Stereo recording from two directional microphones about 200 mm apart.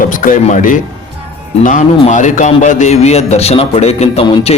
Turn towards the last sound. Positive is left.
turn(degrees=30)  # may be behind; listen again after turning